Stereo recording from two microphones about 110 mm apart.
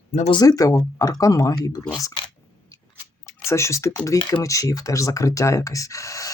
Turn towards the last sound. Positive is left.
turn(degrees=30)  # may be behind; listen again after turning